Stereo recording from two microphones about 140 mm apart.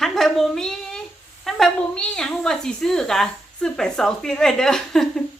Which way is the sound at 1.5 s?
Centre (ahead or behind).